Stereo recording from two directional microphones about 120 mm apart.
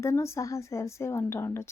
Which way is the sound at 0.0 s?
25° left (ahead or behind).